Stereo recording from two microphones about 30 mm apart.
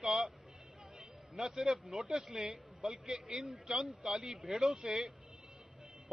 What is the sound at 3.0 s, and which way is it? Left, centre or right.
Speech, right.